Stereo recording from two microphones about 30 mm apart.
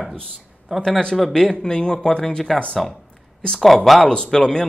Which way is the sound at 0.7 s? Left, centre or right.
Centre.